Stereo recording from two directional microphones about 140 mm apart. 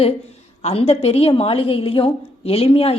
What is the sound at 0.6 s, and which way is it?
A woman's voice, 45° left (ahead or behind).